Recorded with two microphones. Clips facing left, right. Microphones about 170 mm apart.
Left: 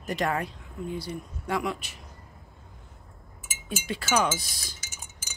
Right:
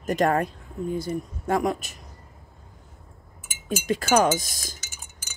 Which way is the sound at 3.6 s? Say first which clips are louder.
Right 7 dB; 45° right (ahead or behind).